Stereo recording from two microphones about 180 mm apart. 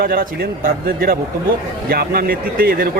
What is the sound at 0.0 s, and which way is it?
Speech, 55° right (ahead or behind).